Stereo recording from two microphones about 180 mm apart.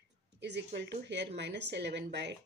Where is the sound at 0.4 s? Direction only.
70° right (ahead or behind).